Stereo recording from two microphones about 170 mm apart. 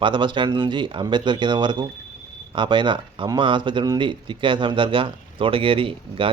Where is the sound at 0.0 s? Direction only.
30° right (ahead or behind).